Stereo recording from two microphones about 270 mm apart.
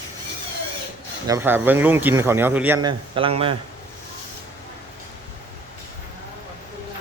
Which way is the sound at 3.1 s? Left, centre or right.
Centre.